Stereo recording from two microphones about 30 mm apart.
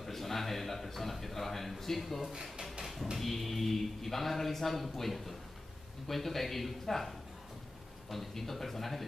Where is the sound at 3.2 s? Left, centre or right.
Centre.